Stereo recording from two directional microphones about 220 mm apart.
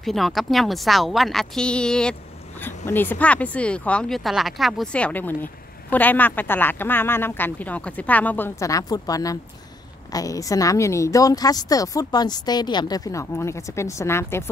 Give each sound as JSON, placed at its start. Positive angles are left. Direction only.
{"t": 0.0, "sound": "speech", "side_deg": 0}